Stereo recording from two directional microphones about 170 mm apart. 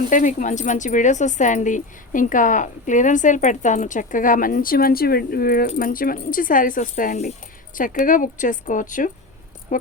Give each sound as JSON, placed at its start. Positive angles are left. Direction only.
{"t": 0.1, "sound": "speech", "side_deg": 50}